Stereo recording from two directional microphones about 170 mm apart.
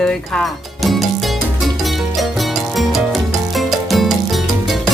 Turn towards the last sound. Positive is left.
turn(degrees=0)  # may be behind; listen again after turning